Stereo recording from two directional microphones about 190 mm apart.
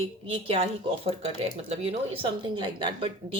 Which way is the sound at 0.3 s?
30° right (ahead or behind).